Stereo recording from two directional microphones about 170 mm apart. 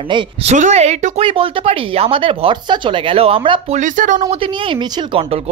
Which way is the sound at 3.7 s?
50° right (ahead or behind).